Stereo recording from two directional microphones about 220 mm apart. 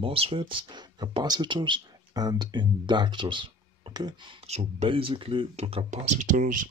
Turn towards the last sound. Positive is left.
turn(degrees=-35)  # may be behind; listen again after turning